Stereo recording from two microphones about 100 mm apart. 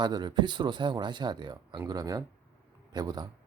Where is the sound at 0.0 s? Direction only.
45° right (ahead or behind).